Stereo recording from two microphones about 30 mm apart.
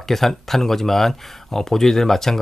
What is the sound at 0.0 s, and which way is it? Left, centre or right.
Speech, centre.